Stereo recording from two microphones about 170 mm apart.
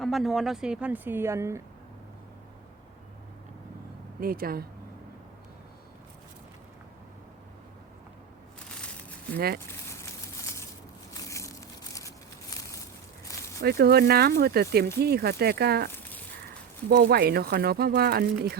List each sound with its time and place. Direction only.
0.0 s a woman's voice: centre (ahead or behind); by 1.6 s 15° right (ahead or behind)
4.2 s speech: 60° right (ahead or behind)
11.1 s a sound: 20° left (ahead or behind)
13.6 s speech: 70° right (ahead or behind)
16.9 s speech: 65° right (ahead or behind)